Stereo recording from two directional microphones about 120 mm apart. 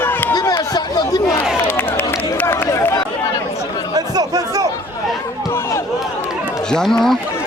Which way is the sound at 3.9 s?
30° right (ahead or behind).